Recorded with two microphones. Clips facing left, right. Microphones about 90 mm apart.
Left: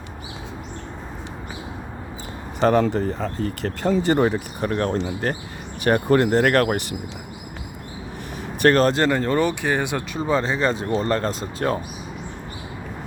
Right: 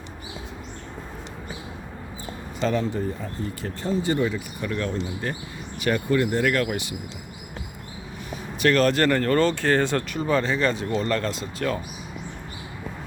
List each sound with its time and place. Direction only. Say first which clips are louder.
2.6 s speech: left 6 dB; 60° left (ahead or behind)
4.9 s speech: left 5 dB; 65° left (ahead or behind)
5.8 s speech: left 5 dB; 55° left (ahead or behind)
8.6 s speech: left 3 dB; 35° left (ahead or behind)
9.0 s speech: even; 20° left (ahead or behind)
10.2 s speech: left 2 dB; 25° left (ahead or behind)